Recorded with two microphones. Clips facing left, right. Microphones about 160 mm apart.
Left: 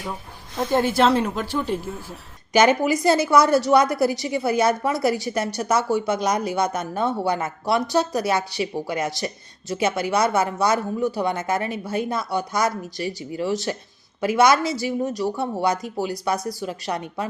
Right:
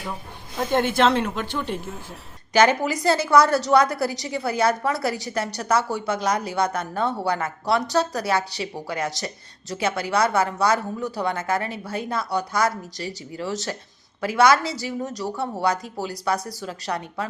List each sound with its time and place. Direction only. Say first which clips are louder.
0.5 s a woman's voice: left 1 dB; centre (ahead or behind); by 17.2 s 15° left (ahead or behind)